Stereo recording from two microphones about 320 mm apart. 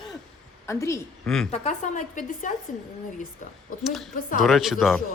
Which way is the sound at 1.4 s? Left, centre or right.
Left.